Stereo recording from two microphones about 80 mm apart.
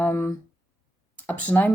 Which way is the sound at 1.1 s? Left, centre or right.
Centre.